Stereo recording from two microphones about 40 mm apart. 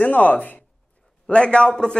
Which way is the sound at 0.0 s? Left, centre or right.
Left.